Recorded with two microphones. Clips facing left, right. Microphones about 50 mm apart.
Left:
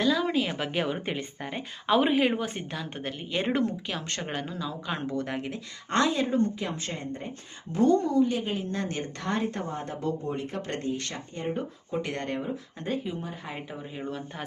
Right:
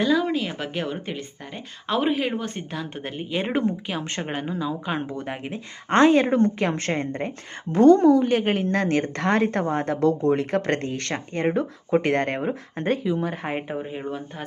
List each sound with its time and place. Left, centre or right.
0.0 s speech: centre
3.0 s speech: centre
5.9 s speech: right
6.2 s a woman's voice: right
11.9 s speech: right
13.9 s speech: centre